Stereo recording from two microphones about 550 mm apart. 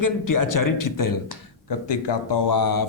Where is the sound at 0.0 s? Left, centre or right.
Left.